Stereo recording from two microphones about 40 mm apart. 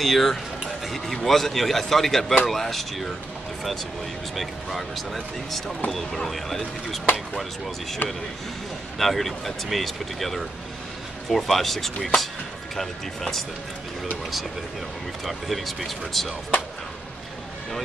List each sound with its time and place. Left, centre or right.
0.0 s a man's voice: centre
4.4 s speech: centre
8.0 s speech: left
8.9 s a man's voice: centre
15.2 s speech: centre